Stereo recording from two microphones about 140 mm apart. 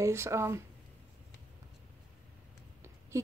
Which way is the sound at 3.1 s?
20° right (ahead or behind).